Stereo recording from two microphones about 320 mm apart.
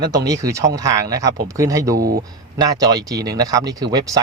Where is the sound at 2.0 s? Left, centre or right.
Right.